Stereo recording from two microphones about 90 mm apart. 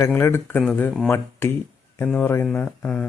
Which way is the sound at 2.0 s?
15° left (ahead or behind).